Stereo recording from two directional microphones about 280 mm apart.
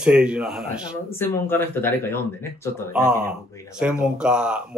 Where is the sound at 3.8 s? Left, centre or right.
Centre.